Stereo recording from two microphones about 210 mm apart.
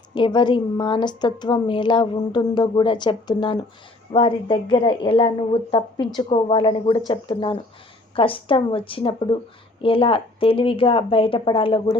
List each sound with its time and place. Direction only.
0.1 s a woman's voice: 20° left (ahead or behind)